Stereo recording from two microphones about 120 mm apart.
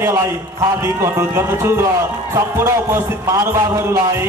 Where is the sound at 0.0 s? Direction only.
25° right (ahead or behind).